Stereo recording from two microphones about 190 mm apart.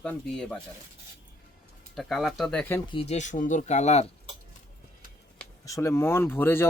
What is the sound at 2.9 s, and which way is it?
Speech, 30° left (ahead or behind).